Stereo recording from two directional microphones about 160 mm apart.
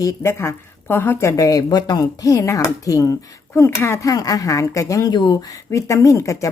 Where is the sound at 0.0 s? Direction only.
15° left (ahead or behind).